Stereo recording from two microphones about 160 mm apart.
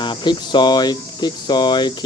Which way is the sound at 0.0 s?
30° left (ahead or behind).